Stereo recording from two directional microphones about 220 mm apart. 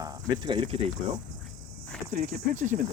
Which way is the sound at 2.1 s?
40° right (ahead or behind).